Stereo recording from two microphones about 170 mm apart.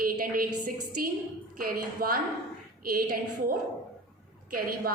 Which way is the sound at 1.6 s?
60° right (ahead or behind).